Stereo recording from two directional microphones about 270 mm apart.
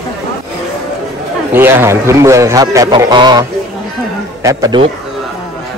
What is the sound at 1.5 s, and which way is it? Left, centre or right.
Speech, centre.